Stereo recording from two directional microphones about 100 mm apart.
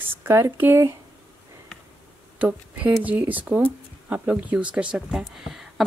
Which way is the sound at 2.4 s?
15° right (ahead or behind).